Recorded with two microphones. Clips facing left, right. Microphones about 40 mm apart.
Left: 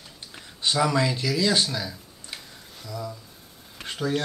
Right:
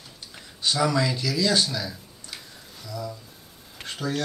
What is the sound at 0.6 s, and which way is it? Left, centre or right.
Speech, centre.